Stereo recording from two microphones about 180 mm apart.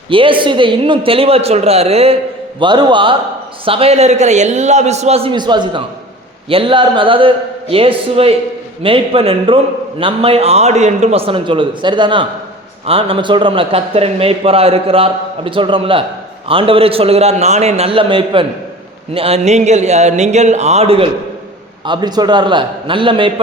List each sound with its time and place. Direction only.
0.1 s a man's voice: 30° right (ahead or behind)